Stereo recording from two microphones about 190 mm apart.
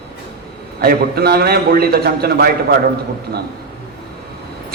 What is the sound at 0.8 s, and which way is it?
A man's voice, 55° right (ahead or behind).